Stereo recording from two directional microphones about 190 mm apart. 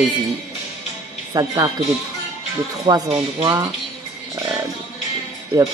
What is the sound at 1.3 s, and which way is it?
Speech, 20° right (ahead or behind).